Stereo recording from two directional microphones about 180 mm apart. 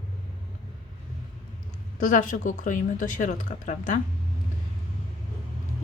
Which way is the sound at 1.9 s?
45° left (ahead or behind).